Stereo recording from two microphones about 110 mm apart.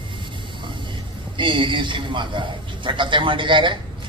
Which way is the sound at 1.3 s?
50° right (ahead or behind).